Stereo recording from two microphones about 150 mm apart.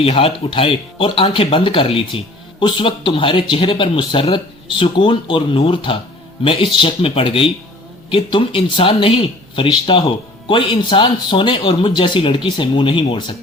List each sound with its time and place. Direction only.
0.0 s speech: 40° left (ahead or behind)